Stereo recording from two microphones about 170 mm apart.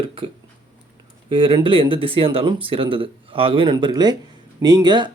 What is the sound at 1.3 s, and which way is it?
Speech, 30° right (ahead or behind).